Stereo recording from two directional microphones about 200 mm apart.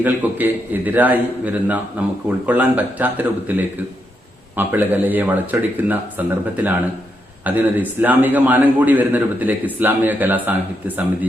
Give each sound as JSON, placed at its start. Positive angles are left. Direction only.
{"t": 0.0, "sound": "a man's voice", "side_deg": -10}
{"t": 4.5, "sound": "a man's voice", "side_deg": -10}